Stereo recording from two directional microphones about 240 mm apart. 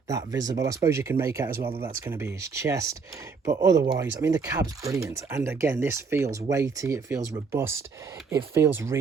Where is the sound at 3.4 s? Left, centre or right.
Right.